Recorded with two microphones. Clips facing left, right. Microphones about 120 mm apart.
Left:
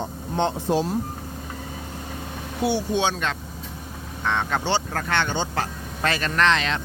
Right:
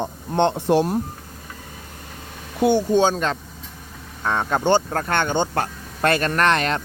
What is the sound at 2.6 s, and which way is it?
Speech, 50° right (ahead or behind).